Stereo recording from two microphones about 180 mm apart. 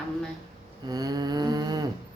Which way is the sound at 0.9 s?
20° right (ahead or behind).